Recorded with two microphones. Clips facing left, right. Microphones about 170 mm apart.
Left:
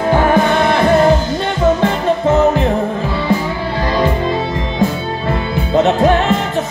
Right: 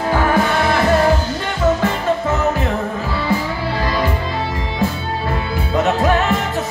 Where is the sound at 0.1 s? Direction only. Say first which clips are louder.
Left 4 dB; 25° left (ahead or behind).